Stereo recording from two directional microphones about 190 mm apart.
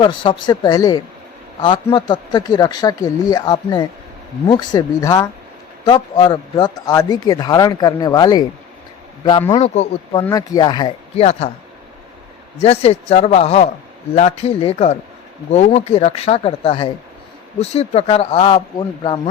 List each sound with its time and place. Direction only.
0.0 s speech: 25° left (ahead or behind)
9.6 s speech: 35° left (ahead or behind)
10.2 s speech: 20° left (ahead or behind)
12.6 s speech: 35° left (ahead or behind)